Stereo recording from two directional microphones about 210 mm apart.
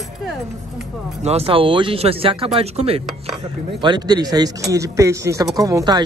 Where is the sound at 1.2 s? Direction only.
30° right (ahead or behind).